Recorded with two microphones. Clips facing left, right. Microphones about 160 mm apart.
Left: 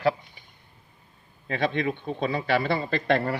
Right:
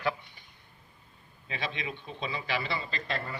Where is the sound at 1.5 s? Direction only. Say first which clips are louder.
Left 11 dB; 50° left (ahead or behind); by 3.4 s 70° left (ahead or behind).